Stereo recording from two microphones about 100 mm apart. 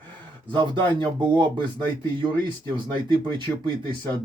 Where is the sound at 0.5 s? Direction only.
50° right (ahead or behind).